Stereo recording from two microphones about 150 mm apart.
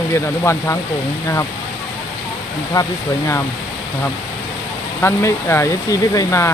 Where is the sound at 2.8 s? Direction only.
20° left (ahead or behind).